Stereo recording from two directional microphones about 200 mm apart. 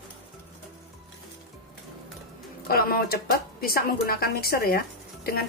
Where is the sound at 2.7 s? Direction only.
50° left (ahead or behind).